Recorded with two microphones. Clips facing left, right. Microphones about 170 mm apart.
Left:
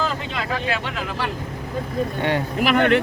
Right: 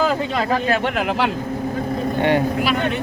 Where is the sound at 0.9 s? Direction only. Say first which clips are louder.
Right 7 dB; 65° right (ahead or behind).